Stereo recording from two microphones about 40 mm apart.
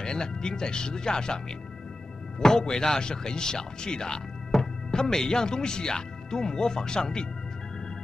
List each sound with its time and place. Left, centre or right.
0.0 s speech: centre
2.4 s speech: centre